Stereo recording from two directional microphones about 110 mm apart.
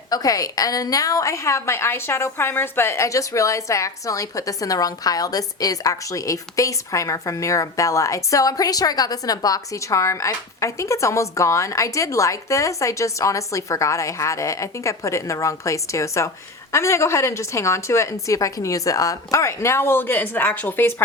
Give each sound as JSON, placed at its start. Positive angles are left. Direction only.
{"t": 0.1, "sound": "a woman's voice", "side_deg": 35}